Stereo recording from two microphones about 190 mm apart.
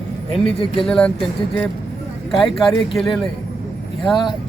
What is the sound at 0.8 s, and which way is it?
Speech, 5° left (ahead or behind).